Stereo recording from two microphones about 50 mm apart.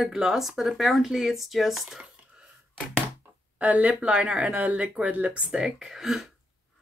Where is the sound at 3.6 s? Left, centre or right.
Right.